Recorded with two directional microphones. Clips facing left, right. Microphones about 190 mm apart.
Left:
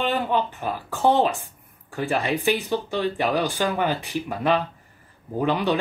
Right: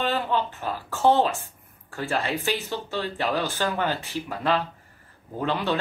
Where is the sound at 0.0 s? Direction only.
15° left (ahead or behind).